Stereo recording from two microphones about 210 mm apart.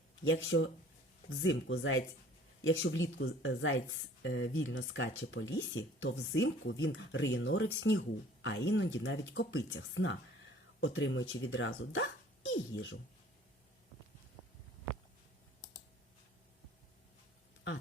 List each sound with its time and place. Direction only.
0.3 s speech: 65° left (ahead or behind)
4.2 s speech: 55° left (ahead or behind)